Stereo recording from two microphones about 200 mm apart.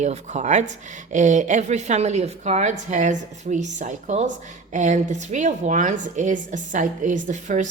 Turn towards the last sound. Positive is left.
turn(degrees=-40)  # may be behind; listen again after turning